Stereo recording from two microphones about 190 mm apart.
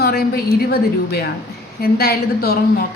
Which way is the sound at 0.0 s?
55° left (ahead or behind).